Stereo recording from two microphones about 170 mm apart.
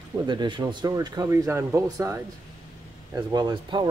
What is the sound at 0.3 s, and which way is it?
Speech, 25° right (ahead or behind).